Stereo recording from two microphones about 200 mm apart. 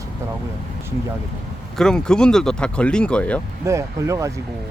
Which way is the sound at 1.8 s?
5° left (ahead or behind).